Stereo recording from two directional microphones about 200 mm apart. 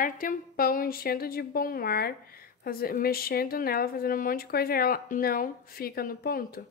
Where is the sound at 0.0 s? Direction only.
45° left (ahead or behind).